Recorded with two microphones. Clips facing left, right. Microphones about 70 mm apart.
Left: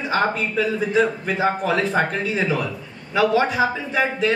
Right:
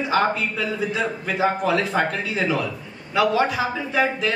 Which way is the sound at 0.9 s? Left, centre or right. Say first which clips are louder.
Left 5 dB; left.